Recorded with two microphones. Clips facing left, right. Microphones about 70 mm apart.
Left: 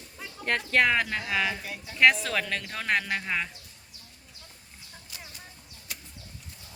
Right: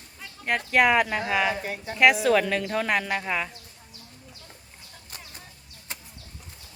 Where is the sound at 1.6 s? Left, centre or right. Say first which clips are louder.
Right 7 dB; right.